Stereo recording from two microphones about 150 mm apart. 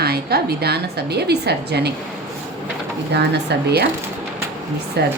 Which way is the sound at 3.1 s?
90° right.